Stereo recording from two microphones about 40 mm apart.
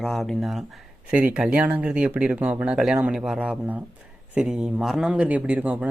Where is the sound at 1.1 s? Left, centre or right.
Right.